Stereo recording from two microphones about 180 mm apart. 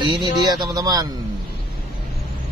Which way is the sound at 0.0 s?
25° right (ahead or behind).